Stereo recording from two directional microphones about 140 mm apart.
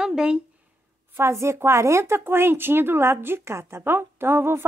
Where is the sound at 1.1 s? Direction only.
20° right (ahead or behind).